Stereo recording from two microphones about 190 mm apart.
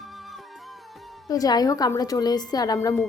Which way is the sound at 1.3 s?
20° left (ahead or behind).